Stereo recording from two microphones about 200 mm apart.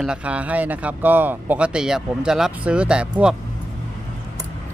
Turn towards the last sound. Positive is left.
turn(degrees=-5)  # may be behind; listen again after turning